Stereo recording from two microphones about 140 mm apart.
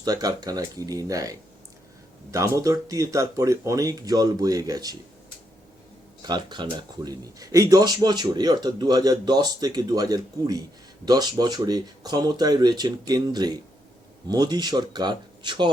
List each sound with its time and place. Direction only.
0.0 s speech: 30° right (ahead or behind)
6.2 s speech: 30° right (ahead or behind)